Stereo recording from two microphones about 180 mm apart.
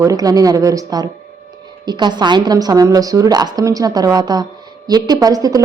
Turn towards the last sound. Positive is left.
turn(degrees=-20)  # may be behind; listen again after turning